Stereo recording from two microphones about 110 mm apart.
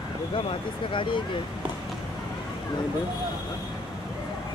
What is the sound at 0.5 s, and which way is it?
Speech, 50° left (ahead or behind).